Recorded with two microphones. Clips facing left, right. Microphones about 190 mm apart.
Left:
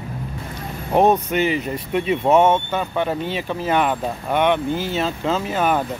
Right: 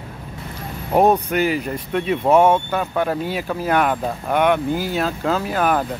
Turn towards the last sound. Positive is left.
turn(degrees=-5)  # may be behind; listen again after turning